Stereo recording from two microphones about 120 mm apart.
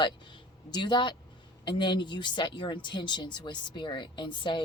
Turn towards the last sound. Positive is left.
turn(degrees=40)  # may be behind; listen again after turning